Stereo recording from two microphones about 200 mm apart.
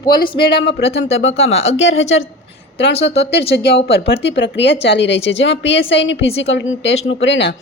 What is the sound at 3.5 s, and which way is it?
Speech, 55° left (ahead or behind).